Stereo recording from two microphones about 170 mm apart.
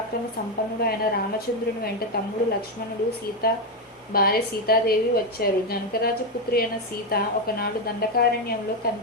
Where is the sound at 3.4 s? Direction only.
60° left (ahead or behind).